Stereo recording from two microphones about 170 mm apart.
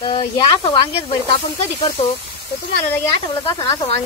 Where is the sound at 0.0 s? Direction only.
30° left (ahead or behind).